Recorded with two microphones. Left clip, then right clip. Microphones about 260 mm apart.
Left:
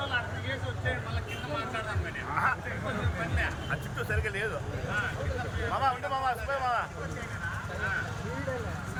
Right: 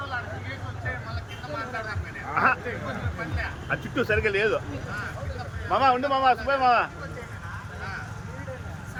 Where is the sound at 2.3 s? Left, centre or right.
Right.